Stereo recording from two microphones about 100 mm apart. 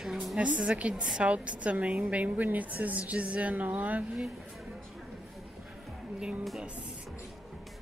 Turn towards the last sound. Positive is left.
turn(degrees=-5)  # may be behind; listen again after turning